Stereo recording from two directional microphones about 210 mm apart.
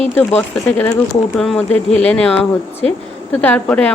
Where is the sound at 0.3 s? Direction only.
10° left (ahead or behind).